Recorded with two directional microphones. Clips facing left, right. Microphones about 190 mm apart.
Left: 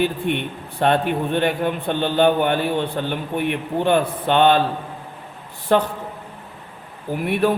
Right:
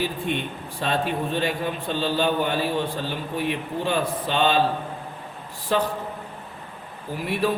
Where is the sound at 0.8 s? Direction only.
60° left (ahead or behind).